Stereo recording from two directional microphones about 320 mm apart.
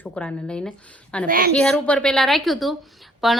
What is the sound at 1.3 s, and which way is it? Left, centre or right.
Speech, right.